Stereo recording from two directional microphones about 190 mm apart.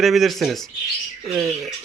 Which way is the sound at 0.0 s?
Centre (ahead or behind).